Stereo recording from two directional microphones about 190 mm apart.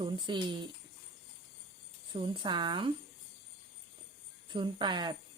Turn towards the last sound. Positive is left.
turn(degrees=-25)  # may be behind; listen again after turning